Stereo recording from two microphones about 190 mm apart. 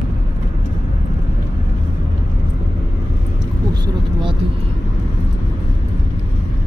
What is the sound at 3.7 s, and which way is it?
Vehicle, 25° right (ahead or behind).